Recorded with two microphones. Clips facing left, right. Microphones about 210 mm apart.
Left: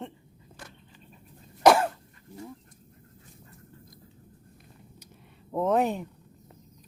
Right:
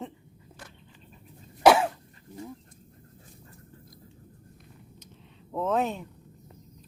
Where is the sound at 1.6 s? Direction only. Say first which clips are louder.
Even; 5° right (ahead or behind).